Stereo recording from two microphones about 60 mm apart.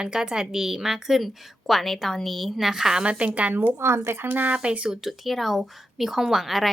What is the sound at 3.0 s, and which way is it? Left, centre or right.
Speech, centre.